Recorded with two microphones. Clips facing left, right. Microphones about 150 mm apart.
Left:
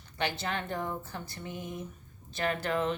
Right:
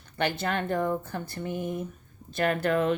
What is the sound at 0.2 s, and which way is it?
Speech, 55° right (ahead or behind).